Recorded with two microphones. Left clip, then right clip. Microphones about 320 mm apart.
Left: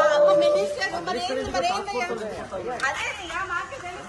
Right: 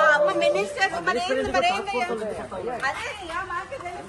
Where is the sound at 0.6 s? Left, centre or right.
Right.